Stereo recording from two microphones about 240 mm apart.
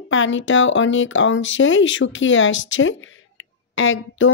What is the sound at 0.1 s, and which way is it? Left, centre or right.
Speech, left.